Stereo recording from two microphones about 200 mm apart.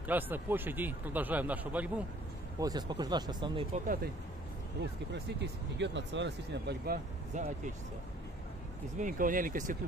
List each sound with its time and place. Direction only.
0.0 s speech: 10° right (ahead or behind)
2.6 s speech: 20° right (ahead or behind)
3.7 s speech: 45° right (ahead or behind)
5.1 s speech: 60° right (ahead or behind)
7.3 s speech: 40° right (ahead or behind)
8.9 s speech: 40° right (ahead or behind)